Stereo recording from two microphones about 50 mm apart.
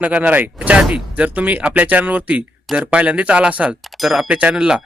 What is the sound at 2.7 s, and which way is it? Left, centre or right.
Speech, centre.